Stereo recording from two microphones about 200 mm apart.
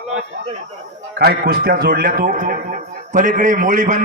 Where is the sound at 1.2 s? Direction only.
50° right (ahead or behind).